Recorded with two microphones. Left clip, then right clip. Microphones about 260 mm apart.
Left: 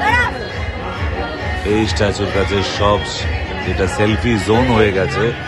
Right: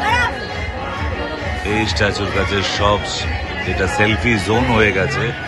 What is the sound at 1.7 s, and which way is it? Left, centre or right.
A man's voice, centre.